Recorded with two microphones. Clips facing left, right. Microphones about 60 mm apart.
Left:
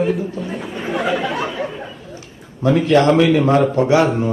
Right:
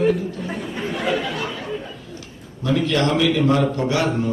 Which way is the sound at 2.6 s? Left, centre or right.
Left.